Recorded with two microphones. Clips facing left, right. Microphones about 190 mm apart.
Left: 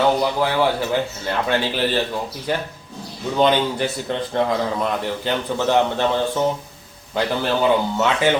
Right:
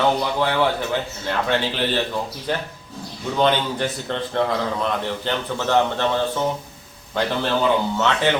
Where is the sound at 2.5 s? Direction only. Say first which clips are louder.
Left 4 dB; 10° left (ahead or behind).